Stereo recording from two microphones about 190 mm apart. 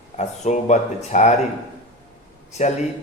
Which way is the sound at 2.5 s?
35° left (ahead or behind).